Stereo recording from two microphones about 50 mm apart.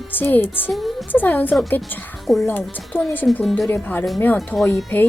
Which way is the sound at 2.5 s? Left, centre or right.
Left.